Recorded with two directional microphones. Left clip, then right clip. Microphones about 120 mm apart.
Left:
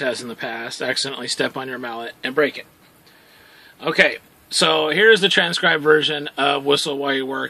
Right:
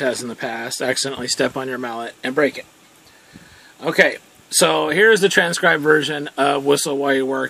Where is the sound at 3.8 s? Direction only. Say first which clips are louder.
Right 1 dB; 45° right (ahead or behind).